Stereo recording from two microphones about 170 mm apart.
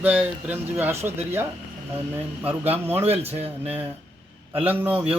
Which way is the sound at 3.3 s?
35° right (ahead or behind).